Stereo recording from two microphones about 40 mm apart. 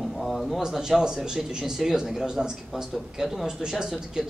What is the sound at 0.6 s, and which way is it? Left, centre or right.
A man's voice, centre.